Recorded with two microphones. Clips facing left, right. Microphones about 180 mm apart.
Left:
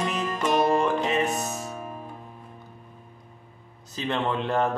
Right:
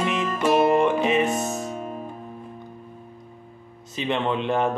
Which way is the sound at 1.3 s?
Centre (ahead or behind).